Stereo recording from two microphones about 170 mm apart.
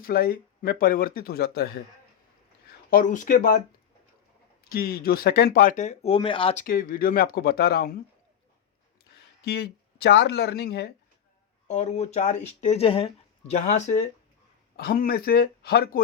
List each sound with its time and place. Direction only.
0.0 s speech: 65° left (ahead or behind)
2.9 s speech: 50° left (ahead or behind)
4.7 s speech: 60° left (ahead or behind); by 6.6 s 30° left (ahead or behind)
6.6 s speech: 55° left (ahead or behind)
9.4 s speech: 75° left (ahead or behind)
11.7 s speech: 40° left (ahead or behind)
13.5 s speech: 45° left (ahead or behind)
14.8 s speech: 65° left (ahead or behind)